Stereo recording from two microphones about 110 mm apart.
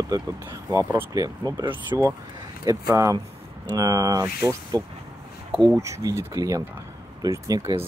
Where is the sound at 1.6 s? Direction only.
45° right (ahead or behind).